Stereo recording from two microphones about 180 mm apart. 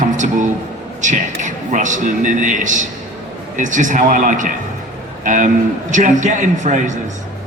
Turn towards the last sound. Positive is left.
turn(degrees=-45)  # may be behind; listen again after turning